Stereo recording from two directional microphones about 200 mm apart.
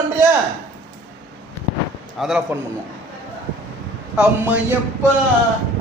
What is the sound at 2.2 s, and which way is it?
Speech, centre (ahead or behind).